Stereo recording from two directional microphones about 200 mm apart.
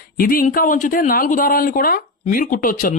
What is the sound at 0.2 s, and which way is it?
Speech, 45° left (ahead or behind).